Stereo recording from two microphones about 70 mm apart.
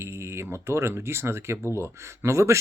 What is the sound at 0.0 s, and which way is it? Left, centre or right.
Speech, right.